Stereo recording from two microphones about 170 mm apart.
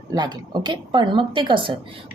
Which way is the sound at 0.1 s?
25° right (ahead or behind).